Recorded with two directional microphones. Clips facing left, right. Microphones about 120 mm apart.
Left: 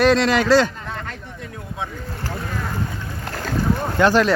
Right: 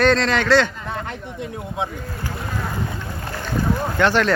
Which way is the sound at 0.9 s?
15° right (ahead or behind).